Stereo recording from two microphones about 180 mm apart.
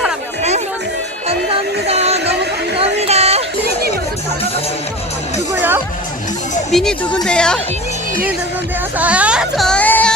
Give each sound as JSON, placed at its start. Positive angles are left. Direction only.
{"t": 1.9, "sound": "music", "side_deg": -35}
{"t": 2.7, "sound": "a sound", "side_deg": -35}
{"t": 5.5, "sound": "music", "side_deg": -10}
{"t": 6.7, "sound": "speech", "side_deg": 0}
{"t": 9.0, "sound": "speech", "side_deg": -5}